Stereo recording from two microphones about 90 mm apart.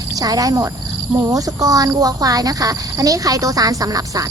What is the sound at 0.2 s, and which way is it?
Speech, 45° right (ahead or behind).